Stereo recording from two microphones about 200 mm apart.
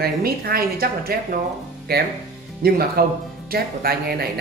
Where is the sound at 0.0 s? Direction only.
50° right (ahead or behind).